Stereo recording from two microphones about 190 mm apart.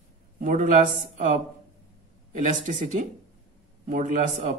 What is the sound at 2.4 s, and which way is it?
Speech, 40° right (ahead or behind).